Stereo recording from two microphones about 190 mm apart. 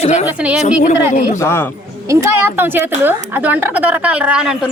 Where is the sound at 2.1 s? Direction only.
15° right (ahead or behind).